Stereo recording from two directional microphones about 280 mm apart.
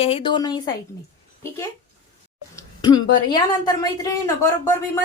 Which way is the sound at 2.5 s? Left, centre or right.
Centre.